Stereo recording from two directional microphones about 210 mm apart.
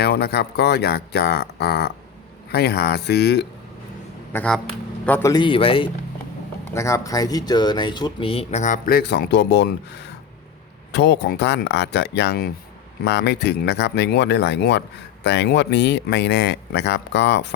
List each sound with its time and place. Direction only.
0.0 s speech: 50° left (ahead or behind)
4.3 s speech: 5° left (ahead or behind); by 5.9 s 25° left (ahead or behind)
6.7 s speech: 15° left (ahead or behind); by 9.7 s 55° left (ahead or behind)
10.9 s speech: 55° left (ahead or behind)